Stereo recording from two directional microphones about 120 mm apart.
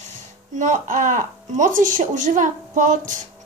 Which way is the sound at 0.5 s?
90° right.